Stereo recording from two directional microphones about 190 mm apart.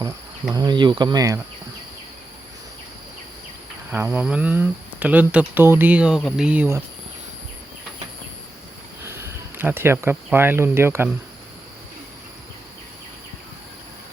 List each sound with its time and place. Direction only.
0.5 s speech: 20° right (ahead or behind)
3.9 s speech: 10° right (ahead or behind)
9.6 s speech: 10° right (ahead or behind)